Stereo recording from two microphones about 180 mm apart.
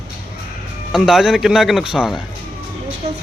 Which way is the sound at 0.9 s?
Centre (ahead or behind).